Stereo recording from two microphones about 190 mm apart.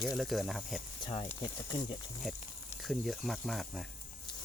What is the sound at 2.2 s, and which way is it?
Speech, centre (ahead or behind).